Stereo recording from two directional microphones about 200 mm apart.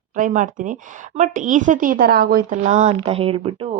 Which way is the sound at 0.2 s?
40° right (ahead or behind).